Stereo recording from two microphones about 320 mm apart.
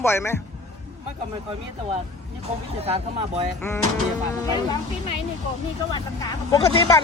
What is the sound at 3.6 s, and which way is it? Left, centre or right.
Speech, centre.